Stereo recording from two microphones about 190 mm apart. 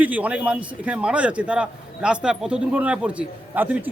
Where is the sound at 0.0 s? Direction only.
10° right (ahead or behind).